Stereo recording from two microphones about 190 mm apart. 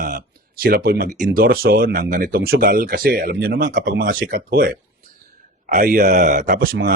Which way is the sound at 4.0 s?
45° right (ahead or behind).